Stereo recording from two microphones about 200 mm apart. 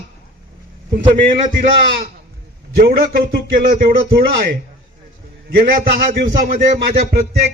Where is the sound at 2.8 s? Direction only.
50° right (ahead or behind).